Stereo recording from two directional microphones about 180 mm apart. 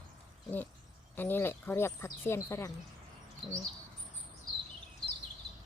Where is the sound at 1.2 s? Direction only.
10° left (ahead or behind).